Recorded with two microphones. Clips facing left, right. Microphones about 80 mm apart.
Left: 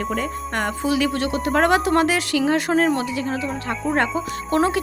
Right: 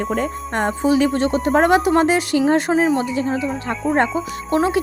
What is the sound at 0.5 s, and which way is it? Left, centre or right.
Speech, right.